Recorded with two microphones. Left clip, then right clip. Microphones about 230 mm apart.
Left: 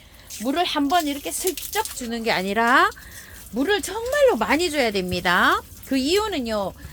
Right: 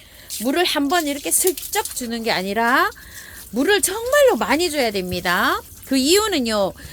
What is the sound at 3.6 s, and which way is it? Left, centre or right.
Speech, right.